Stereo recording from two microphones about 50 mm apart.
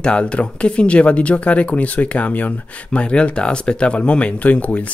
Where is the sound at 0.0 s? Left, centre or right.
Left.